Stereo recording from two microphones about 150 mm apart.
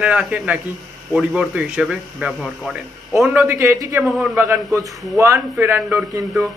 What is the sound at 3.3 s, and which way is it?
Speech, 15° right (ahead or behind).